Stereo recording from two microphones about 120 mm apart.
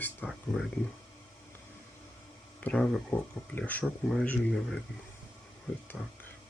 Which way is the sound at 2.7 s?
Centre (ahead or behind).